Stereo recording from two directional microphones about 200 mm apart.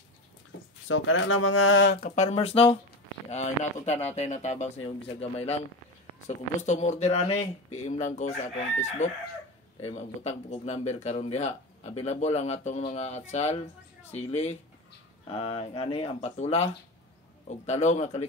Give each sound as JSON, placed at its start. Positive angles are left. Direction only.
{"t": 0.8, "sound": "speech", "side_deg": 80}
{"t": 2.0, "sound": "speech", "side_deg": 40}